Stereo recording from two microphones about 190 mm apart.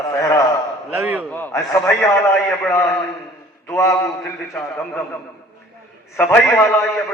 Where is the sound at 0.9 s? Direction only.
10° right (ahead or behind).